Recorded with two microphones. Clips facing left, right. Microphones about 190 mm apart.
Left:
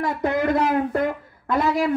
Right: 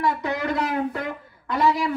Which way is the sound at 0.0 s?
50° left (ahead or behind).